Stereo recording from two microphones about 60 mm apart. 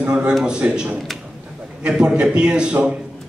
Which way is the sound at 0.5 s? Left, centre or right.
Centre.